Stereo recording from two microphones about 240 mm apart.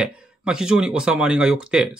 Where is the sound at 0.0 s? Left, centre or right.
Centre.